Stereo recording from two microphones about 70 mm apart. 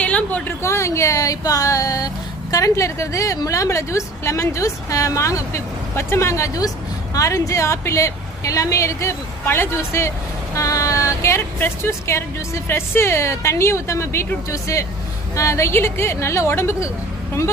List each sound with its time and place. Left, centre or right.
0.0 s a sound: centre
0.6 s a woman's voice: left
10.5 s a woman's voice: left
15.7 s a woman's voice: left